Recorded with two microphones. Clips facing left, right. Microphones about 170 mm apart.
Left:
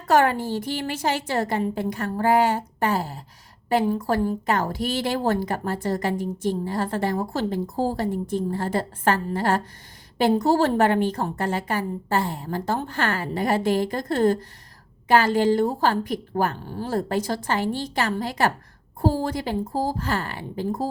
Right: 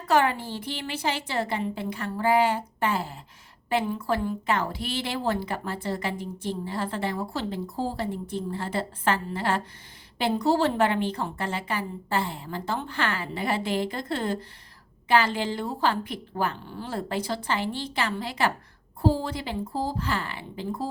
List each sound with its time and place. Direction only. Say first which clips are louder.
0.1 s a woman's voice: left 4 dB; 45° left (ahead or behind)